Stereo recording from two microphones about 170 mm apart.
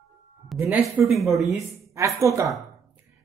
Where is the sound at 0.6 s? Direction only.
10° right (ahead or behind).